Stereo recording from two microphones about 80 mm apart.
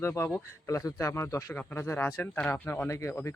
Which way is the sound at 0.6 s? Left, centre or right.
Left.